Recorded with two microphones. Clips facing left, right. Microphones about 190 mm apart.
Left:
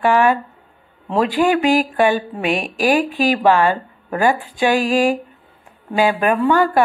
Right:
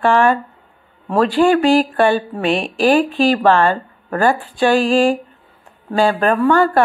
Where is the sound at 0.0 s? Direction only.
10° left (ahead or behind).